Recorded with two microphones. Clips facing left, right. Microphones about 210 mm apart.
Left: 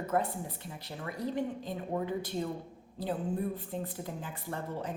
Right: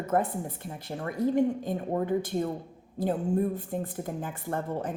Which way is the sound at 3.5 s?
50° right (ahead or behind).